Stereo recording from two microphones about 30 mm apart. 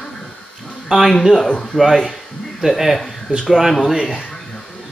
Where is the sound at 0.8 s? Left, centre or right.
Centre.